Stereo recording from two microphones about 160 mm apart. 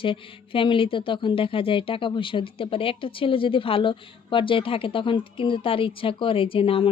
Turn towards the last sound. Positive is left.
turn(degrees=35)  # may be behind; listen again after turning